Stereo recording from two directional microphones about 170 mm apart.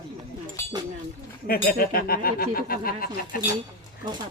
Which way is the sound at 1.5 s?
60° left (ahead or behind).